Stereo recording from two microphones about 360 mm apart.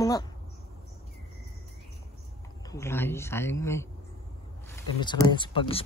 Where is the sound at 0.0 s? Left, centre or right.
Centre.